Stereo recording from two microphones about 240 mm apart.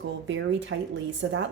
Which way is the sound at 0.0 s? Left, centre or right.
Right.